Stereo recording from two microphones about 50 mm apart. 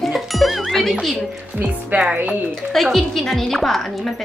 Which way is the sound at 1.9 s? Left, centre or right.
Right.